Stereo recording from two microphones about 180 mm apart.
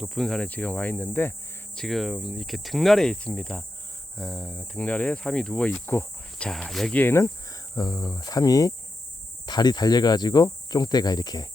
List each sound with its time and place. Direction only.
0.0 s speech: centre (ahead or behind); by 11.4 s 20° left (ahead or behind)